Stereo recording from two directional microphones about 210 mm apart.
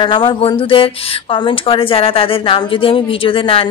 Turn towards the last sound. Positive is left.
turn(degrees=25)  # may be behind; listen again after turning